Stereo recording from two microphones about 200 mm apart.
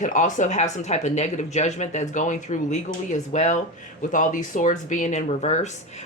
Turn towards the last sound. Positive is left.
turn(degrees=35)  # may be behind; listen again after turning